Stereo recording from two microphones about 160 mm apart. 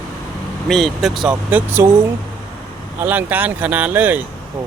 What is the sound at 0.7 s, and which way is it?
Speech, centre (ahead or behind).